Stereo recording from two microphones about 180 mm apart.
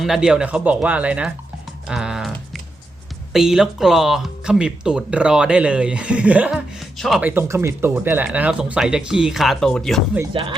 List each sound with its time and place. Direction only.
0.0 s speech: centre (ahead or behind)
1.9 s typing: 5° right (ahead or behind)
3.3 s speech: 5° right (ahead or behind)
10.3 s speech: 30° right (ahead or behind)